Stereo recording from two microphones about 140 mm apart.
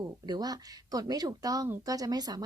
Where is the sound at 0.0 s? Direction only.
30° right (ahead or behind).